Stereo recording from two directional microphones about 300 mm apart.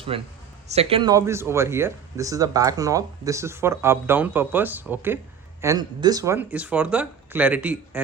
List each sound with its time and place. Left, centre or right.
0.1 s a man's voice: centre